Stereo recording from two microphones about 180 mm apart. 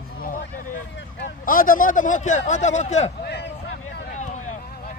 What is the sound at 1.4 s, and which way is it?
Speech, 50° left (ahead or behind).